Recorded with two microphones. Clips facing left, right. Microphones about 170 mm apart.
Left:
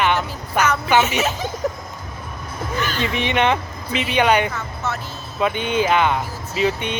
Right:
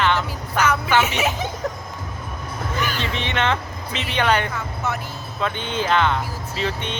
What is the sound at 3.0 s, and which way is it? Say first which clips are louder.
Speech: left 7 dB; 15° left (ahead or behind).